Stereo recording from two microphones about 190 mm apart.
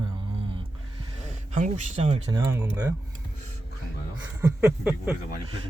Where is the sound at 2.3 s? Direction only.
15° right (ahead or behind).